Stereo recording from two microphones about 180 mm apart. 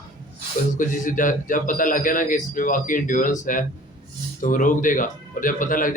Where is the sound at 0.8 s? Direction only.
45° left (ahead or behind).